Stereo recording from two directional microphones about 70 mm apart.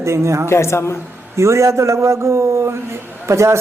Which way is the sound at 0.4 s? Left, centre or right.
Left.